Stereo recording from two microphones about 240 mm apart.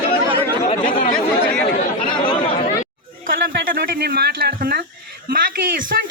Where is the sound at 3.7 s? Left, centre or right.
Right.